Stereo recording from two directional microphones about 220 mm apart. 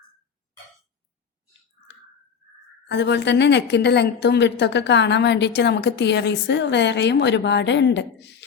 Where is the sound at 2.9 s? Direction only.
50° left (ahead or behind).